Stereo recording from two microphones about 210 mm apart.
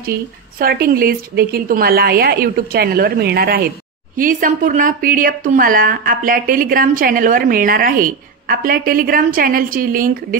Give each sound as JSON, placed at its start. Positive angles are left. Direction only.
{"t": 0.0, "sound": "a woman's voice", "side_deg": -45}